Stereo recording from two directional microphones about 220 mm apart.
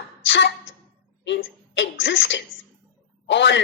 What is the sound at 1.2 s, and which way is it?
Speech, 55° left (ahead or behind).